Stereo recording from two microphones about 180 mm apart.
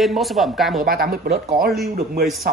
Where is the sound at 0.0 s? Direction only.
Centre (ahead or behind).